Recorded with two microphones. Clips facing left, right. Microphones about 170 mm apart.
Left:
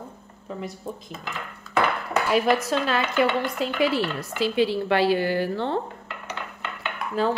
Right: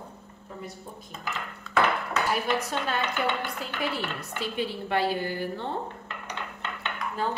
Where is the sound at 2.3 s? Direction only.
90° left.